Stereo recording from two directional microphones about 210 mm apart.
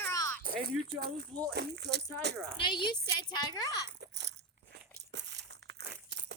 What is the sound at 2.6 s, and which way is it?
A child's voice, 20° left (ahead or behind).